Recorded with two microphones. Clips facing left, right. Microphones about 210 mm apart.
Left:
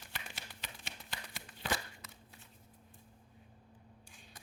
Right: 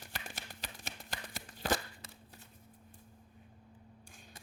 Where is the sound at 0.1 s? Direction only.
45° right (ahead or behind).